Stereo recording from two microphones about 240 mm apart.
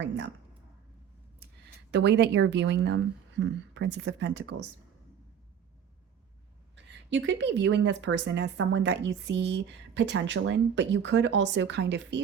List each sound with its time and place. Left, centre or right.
1.9 s speech: right
6.7 s speech: right